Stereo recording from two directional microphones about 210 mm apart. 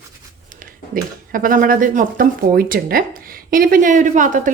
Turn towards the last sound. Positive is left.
turn(degrees=-35)  # may be behind; listen again after turning